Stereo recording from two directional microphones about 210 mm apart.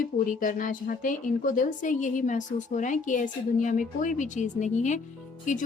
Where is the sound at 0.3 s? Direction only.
40° left (ahead or behind).